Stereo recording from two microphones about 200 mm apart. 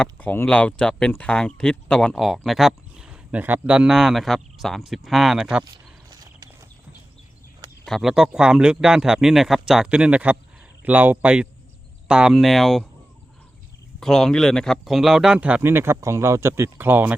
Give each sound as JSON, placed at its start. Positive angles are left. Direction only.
{"t": 0.0, "sound": "speech", "side_deg": 10}
{"t": 5.7, "sound": "a sound", "side_deg": -20}
{"t": 7.9, "sound": "a man's voice", "side_deg": 0}
{"t": 14.0, "sound": "a man's voice", "side_deg": 0}